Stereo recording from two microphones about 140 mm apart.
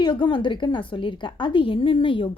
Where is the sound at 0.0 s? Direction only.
35° left (ahead or behind).